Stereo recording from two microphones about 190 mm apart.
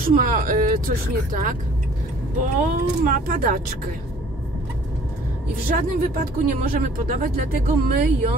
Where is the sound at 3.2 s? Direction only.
45° right (ahead or behind).